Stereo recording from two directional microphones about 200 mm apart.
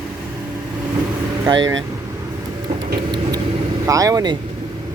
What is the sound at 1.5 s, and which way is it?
Speech, 20° right (ahead or behind).